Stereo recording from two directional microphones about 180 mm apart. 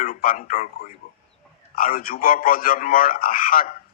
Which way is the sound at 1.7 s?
50° left (ahead or behind).